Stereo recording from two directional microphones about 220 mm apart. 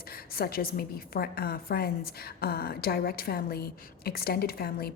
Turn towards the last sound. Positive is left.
turn(degrees=45)  # may be behind; listen again after turning